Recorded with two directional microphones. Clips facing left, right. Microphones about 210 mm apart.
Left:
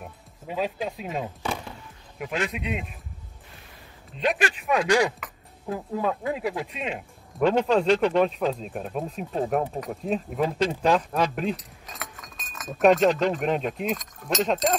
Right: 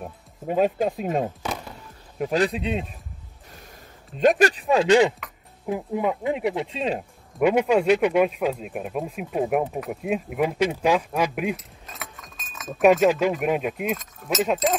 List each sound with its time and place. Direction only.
0.5 s speech: 50° right (ahead or behind)
2.1 s speech: 35° right (ahead or behind)
4.2 s speech: 45° right (ahead or behind)
7.3 s speech: 10° right (ahead or behind)